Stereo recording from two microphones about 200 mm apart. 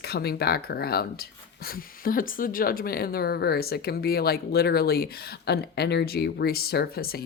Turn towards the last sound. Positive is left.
turn(degrees=50)  # may be behind; listen again after turning